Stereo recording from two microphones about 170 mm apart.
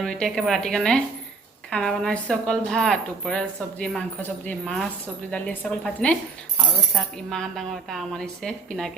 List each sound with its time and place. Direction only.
0.0 s a woman's voice: centre (ahead or behind)